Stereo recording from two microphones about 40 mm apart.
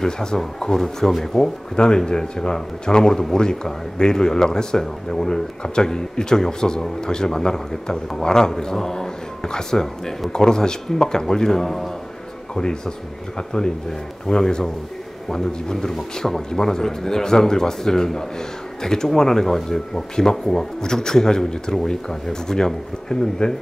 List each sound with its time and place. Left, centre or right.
0.0 s speech: centre
1.8 s speech: centre
13.5 s speech: centre